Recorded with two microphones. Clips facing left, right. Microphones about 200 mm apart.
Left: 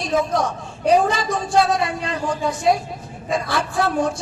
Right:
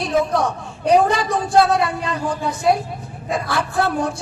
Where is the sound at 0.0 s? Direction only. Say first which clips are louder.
Right 2 dB; 60° right (ahead or behind).